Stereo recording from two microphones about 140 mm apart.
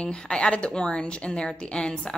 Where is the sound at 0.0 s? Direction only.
5° left (ahead or behind).